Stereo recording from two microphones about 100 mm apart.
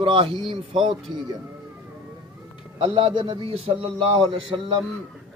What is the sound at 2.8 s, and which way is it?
A man's voice, 65° right (ahead or behind).